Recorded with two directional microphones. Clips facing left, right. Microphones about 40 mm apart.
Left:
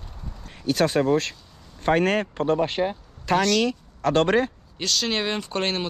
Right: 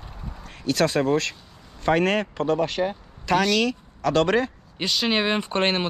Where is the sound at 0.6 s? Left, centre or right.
Right.